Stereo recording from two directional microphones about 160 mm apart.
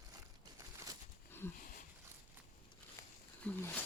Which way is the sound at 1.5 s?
60° left (ahead or behind).